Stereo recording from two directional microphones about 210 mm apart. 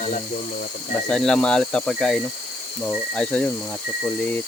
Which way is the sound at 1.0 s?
5° left (ahead or behind).